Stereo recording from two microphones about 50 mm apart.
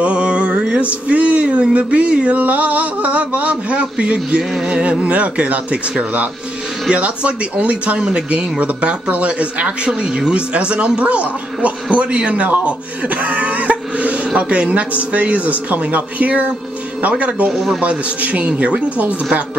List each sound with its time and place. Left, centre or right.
0.0 s speech: right
17.5 s speech: centre
17.7 s speech: right